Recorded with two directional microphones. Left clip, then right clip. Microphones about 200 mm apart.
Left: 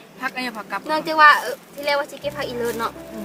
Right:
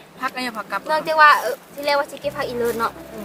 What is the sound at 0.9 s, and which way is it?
Speech, 10° left (ahead or behind).